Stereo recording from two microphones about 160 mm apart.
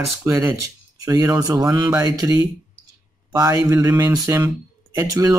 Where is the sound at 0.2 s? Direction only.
15° right (ahead or behind).